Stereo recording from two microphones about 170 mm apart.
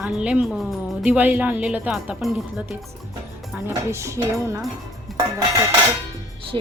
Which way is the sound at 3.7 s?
15° right (ahead or behind).